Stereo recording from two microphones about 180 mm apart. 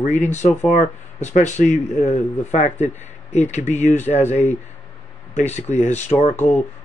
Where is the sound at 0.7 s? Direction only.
45° left (ahead or behind).